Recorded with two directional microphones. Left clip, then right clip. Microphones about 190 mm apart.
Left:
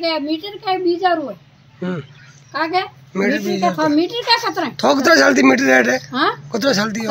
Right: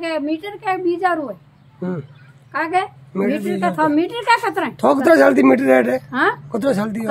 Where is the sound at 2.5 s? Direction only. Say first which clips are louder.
Even; centre (ahead or behind).